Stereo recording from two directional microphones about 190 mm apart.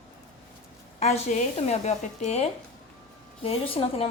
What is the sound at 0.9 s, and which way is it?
A woman's voice, 35° left (ahead or behind).